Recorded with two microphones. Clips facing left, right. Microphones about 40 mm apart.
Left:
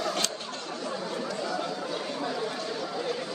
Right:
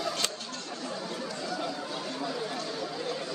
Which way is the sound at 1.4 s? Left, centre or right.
Centre.